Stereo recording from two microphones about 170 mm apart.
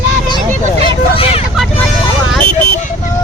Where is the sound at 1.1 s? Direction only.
35° left (ahead or behind).